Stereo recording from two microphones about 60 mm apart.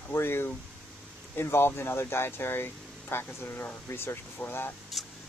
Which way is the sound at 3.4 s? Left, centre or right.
Left.